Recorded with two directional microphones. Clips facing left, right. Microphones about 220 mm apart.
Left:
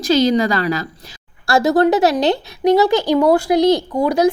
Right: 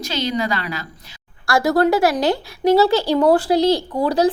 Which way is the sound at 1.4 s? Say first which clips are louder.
Left 3 dB; 25° left (ahead or behind).